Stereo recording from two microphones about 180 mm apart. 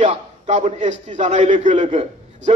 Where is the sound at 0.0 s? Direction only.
45° right (ahead or behind).